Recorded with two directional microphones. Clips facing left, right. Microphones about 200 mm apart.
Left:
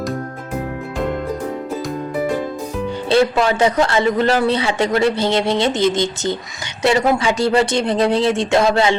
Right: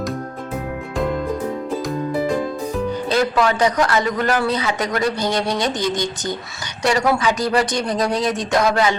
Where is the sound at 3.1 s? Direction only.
25° left (ahead or behind).